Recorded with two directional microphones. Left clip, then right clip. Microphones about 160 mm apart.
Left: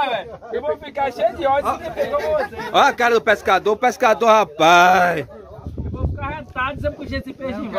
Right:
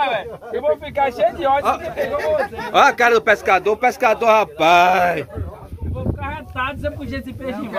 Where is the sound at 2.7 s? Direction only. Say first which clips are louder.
Right 2 dB; 30° left (ahead or behind); by 5.2 s 50° left (ahead or behind).